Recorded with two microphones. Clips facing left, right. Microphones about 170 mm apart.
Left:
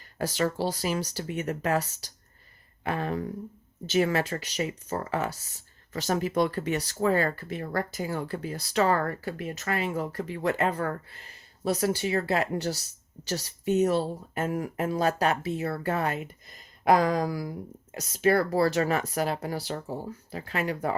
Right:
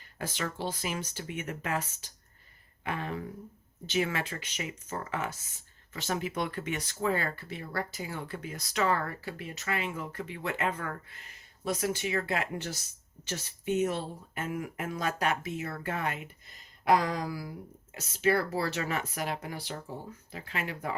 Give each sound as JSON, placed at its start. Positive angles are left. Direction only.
{"t": 0.2, "sound": "speech", "side_deg": 40}
{"t": 16.8, "sound": "speech", "side_deg": 50}